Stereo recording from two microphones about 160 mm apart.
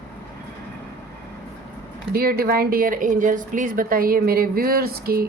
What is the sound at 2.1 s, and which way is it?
A woman's voice, 70° right (ahead or behind).